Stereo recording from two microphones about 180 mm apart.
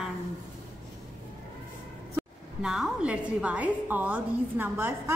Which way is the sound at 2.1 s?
5° right (ahead or behind).